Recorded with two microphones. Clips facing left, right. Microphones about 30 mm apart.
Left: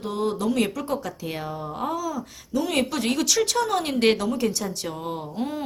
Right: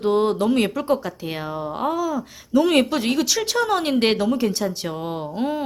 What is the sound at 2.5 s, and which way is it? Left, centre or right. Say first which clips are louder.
Speech: right 7 dB; right.